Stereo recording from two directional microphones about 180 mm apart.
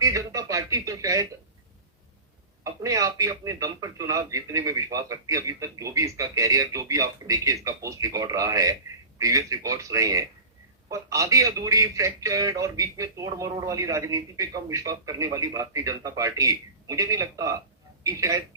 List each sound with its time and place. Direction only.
0.0 s speech: 20° right (ahead or behind)
2.8 s a man's voice: 20° right (ahead or behind)